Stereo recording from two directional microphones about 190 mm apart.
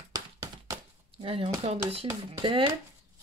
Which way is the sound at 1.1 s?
30° right (ahead or behind).